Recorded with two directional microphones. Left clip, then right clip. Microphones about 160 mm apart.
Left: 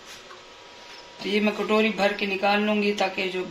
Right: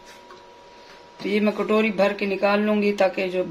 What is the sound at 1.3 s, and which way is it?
Speech, 75° right (ahead or behind).